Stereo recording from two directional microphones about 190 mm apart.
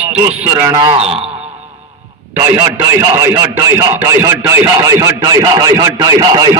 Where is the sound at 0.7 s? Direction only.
25° right (ahead or behind).